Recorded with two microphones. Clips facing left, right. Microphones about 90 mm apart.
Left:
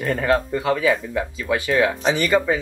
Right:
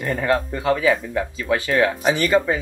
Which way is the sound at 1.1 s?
15° left (ahead or behind).